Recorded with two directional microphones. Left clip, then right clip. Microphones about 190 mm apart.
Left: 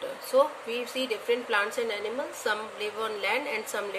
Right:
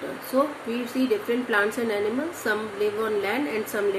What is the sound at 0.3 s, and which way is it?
A woman's voice, 35° left (ahead or behind).